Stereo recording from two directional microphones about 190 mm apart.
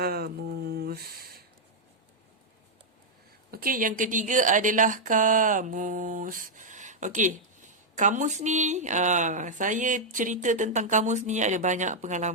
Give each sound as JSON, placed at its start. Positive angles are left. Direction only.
{"t": 0.0, "sound": "a sound", "side_deg": -55}
{"t": 0.7, "sound": "humming", "side_deg": -55}
{"t": 3.5, "sound": "speech", "side_deg": -50}